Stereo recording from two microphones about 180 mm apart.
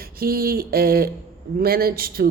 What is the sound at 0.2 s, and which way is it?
Speech, 55° right (ahead or behind).